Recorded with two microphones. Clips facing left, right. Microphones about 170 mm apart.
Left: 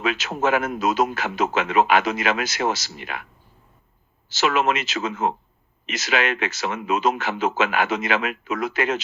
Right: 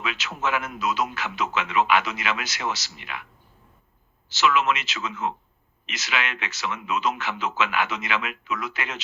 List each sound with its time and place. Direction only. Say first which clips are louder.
0.0 s a man's voice: left 6 dB; 45° left (ahead or behind)
4.3 s a man's voice: left 2 dB; 45° left (ahead or behind)